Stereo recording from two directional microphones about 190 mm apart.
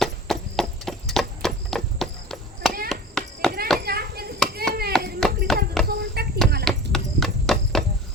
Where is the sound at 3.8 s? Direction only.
55° right (ahead or behind).